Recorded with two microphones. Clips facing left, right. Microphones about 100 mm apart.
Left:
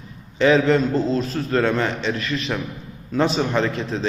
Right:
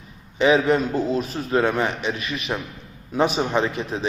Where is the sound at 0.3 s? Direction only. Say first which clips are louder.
Left 1 dB; 15° right (ahead or behind).